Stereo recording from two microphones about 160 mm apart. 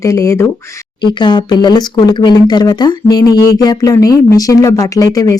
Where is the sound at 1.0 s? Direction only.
30° left (ahead or behind).